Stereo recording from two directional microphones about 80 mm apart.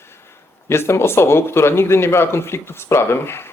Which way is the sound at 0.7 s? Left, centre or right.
Left.